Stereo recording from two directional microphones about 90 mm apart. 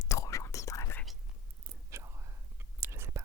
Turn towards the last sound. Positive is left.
turn(degrees=-30)  # may be behind; listen again after turning